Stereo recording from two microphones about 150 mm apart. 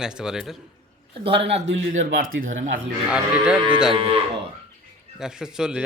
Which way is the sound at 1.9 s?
65° right (ahead or behind).